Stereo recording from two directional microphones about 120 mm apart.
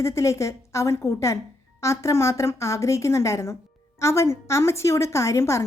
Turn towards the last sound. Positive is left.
turn(degrees=25)  # may be behind; listen again after turning